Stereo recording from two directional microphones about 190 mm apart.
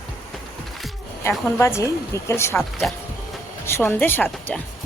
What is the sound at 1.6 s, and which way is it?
Speech, 15° left (ahead or behind).